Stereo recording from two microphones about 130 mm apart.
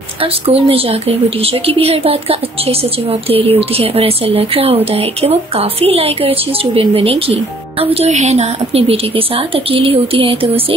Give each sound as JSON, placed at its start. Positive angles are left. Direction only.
{"t": 0.2, "sound": "a woman's voice", "side_deg": -50}